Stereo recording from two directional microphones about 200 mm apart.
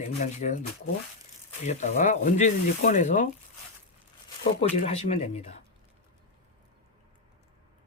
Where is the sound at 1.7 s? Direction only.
40° left (ahead or behind).